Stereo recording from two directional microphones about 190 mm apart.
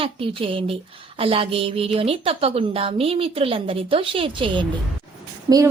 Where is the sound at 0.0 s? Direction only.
30° right (ahead or behind).